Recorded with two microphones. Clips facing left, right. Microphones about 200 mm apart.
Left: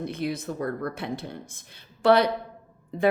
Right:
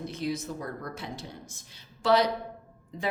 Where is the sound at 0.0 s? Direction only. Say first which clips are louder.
Left 3 dB; 60° left (ahead or behind).